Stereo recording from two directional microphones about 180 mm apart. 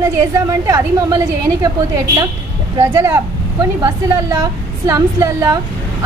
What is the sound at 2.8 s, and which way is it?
A woman's voice, 15° right (ahead or behind).